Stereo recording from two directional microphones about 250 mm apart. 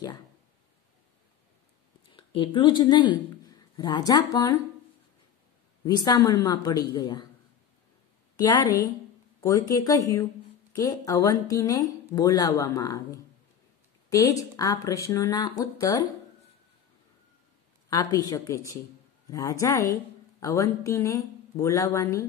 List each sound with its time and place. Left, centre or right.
2.1 s speech: centre
5.9 s speech: centre
8.4 s speech: centre
14.1 s speech: centre
17.8 s speech: centre